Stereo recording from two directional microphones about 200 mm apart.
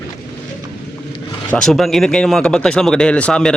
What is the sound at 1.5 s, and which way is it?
Speech, centre (ahead or behind).